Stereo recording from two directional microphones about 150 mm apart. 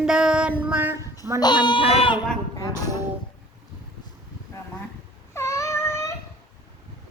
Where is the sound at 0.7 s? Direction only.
10° right (ahead or behind).